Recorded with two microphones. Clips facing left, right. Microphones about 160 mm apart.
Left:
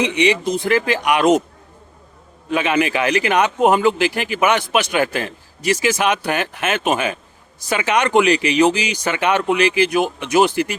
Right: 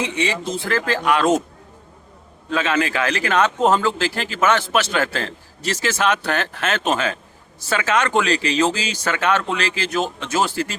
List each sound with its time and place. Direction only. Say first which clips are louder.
0.0 s a man's voice: left 6 dB; 15° left (ahead or behind)
2.5 s a man's voice: left 3 dB; 15° left (ahead or behind)